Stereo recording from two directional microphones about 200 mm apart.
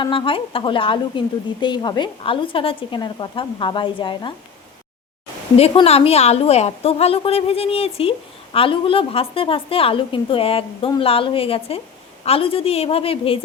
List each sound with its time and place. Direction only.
0.0 s a woman's voice: 25° left (ahead or behind)
5.5 s a woman's voice: 30° left (ahead or behind)